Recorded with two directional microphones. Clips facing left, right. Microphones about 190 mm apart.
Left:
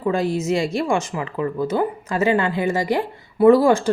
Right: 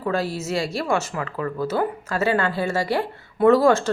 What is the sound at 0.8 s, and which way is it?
Speech, 15° left (ahead or behind).